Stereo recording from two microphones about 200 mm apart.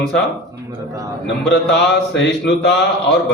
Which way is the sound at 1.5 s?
60° left (ahead or behind).